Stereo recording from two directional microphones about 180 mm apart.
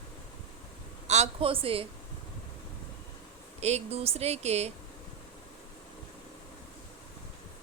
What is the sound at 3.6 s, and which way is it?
Speech, 35° right (ahead or behind).